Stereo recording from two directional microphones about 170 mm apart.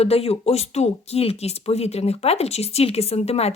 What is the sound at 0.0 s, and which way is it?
Speech, 35° left (ahead or behind).